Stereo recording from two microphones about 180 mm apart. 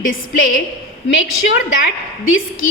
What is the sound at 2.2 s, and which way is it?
Speech, 90° left.